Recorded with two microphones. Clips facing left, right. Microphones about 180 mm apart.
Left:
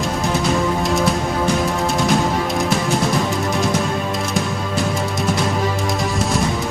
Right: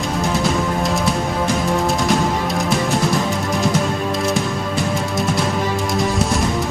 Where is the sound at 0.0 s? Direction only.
Centre (ahead or behind).